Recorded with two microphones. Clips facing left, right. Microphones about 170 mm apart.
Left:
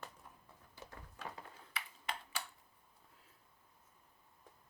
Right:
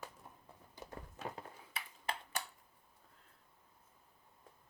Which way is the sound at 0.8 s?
20° right (ahead or behind).